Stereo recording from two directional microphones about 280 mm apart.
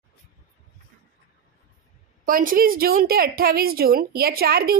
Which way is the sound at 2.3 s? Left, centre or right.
Right.